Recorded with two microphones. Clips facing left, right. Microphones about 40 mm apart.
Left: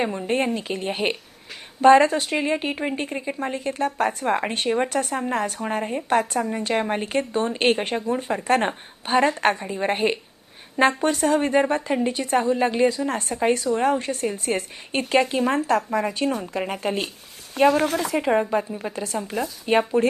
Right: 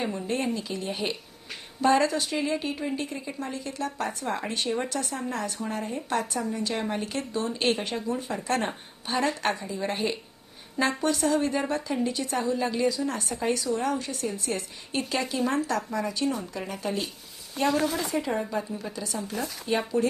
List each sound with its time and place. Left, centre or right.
0.0 s a woman's voice: left